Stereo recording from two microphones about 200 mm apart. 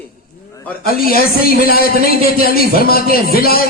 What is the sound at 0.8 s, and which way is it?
A man's voice, 50° left (ahead or behind).